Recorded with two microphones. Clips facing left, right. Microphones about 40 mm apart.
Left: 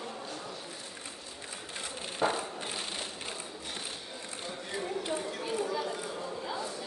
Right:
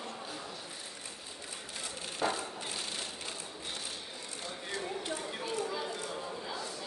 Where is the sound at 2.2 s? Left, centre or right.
Left.